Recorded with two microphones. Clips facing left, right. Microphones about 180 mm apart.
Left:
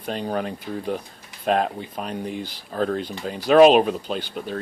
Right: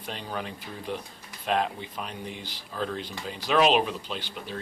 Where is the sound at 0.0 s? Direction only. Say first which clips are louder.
Left 9 dB; 45° left (ahead or behind).